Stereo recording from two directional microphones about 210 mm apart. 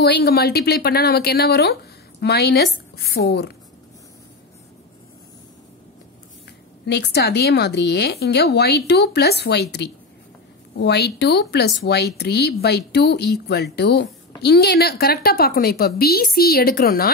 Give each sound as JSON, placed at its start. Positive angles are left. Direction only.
{"t": 0.0, "sound": "speech", "side_deg": 50}
{"t": 6.9, "sound": "speech", "side_deg": 50}